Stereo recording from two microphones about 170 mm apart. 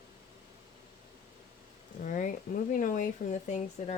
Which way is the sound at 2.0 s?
50° left (ahead or behind).